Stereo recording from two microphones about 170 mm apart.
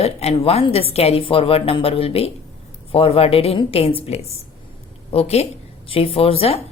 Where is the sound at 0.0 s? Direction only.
35° left (ahead or behind).